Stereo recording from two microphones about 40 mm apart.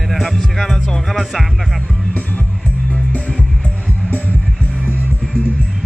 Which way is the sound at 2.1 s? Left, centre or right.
Left.